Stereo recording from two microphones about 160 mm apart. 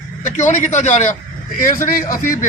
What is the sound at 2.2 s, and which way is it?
Speech, 55° left (ahead or behind).